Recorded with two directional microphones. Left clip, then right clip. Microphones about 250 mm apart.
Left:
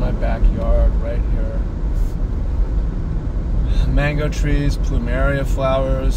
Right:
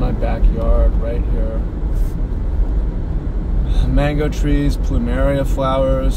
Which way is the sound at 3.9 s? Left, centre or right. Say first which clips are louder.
Right 3 dB; right.